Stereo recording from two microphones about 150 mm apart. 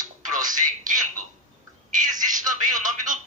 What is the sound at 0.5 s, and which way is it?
A man's voice, 60° right (ahead or behind).